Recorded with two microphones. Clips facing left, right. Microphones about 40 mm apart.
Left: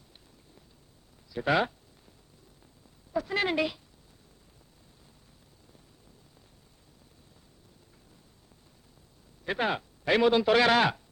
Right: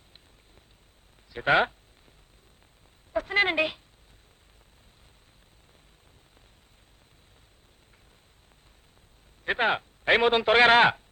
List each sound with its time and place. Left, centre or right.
1.3 s a woman's voice: right
3.1 s a woman's voice: right
9.4 s a man's voice: right